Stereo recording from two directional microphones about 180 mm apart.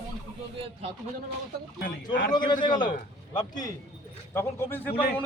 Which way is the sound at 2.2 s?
50° left (ahead or behind).